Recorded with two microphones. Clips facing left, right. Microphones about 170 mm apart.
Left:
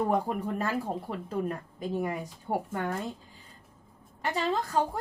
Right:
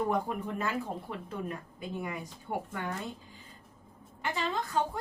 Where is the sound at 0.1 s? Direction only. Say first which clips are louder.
Left 3 dB; 40° left (ahead or behind).